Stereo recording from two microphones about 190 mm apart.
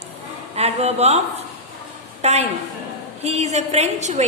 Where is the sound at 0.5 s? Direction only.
35° right (ahead or behind).